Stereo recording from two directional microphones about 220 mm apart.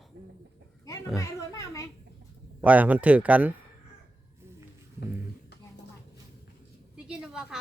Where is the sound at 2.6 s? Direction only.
5° right (ahead or behind).